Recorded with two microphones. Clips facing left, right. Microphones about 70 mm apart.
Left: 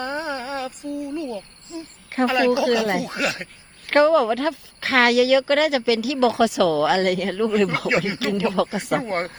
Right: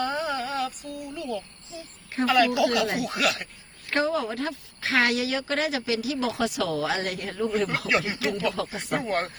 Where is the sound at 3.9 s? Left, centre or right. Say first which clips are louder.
Left 9 dB; left.